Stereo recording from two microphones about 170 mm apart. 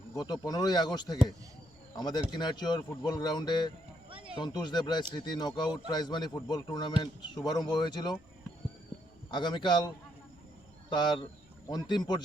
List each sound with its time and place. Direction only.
0.1 s a man's voice: 20° left (ahead or behind)
4.1 s a sound: 30° right (ahead or behind)
4.4 s a man's voice: 25° left (ahead or behind)
9.3 s a man's voice: 25° left (ahead or behind)
10.8 s a man's voice: 25° left (ahead or behind)